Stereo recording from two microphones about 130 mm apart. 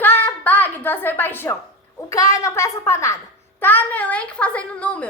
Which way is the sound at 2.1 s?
25° left (ahead or behind).